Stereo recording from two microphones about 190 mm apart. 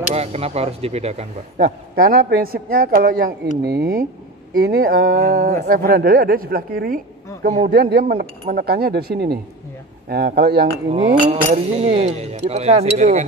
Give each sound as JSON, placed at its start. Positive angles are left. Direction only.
{"t": 0.1, "sound": "speech", "side_deg": -35}
{"t": 1.6, "sound": "speech", "side_deg": -55}
{"t": 10.9, "sound": "speech", "side_deg": -35}